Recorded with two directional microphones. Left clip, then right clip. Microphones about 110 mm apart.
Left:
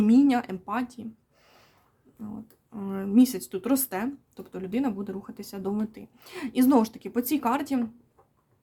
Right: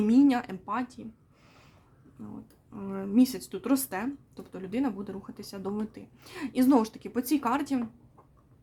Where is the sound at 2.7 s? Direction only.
45° left (ahead or behind).